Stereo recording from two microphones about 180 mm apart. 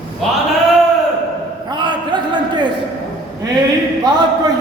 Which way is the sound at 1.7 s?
25° right (ahead or behind).